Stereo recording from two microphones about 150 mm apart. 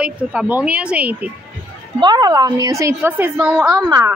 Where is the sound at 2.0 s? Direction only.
25° right (ahead or behind); by 3.7 s 5° right (ahead or behind).